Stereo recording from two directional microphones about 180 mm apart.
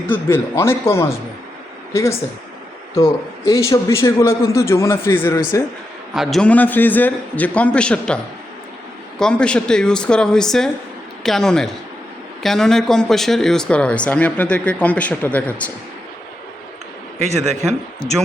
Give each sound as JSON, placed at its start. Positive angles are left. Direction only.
{"t": 0.1, "sound": "speech", "side_deg": 10}
{"t": 6.1, "sound": "speech", "side_deg": 5}